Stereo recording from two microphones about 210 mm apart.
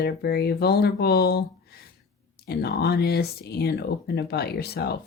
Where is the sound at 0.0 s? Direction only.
50° left (ahead or behind).